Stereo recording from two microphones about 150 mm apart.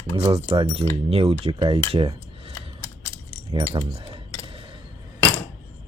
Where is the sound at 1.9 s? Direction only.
35° right (ahead or behind).